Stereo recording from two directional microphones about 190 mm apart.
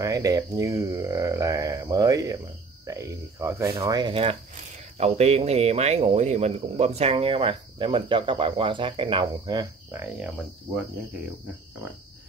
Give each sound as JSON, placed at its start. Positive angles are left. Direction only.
{"t": 0.0, "sound": "speech", "side_deg": -15}